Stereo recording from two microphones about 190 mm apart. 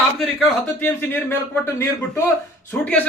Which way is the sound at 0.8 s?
10° left (ahead or behind).